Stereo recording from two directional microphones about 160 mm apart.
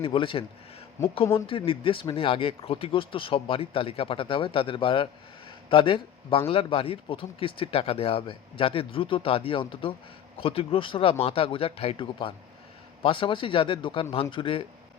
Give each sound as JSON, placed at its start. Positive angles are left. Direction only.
{"t": 0.0, "sound": "speech", "side_deg": 30}